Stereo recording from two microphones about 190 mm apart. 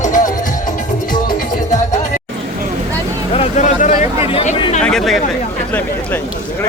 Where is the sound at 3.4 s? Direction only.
40° left (ahead or behind).